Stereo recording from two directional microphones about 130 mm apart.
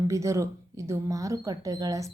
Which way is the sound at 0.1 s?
25° right (ahead or behind).